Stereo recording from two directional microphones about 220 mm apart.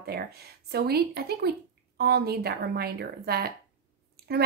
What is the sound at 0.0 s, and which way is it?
A woman's voice, 45° right (ahead or behind).